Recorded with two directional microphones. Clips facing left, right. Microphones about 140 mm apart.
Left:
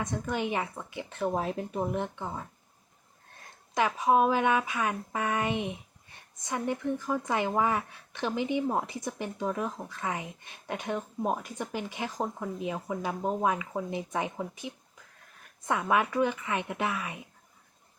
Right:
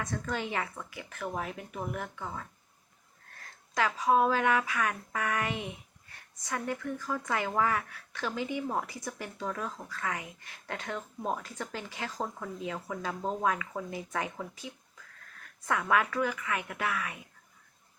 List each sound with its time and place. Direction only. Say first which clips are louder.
0.0 s a woman's voice: left 3 dB; 20° left (ahead or behind)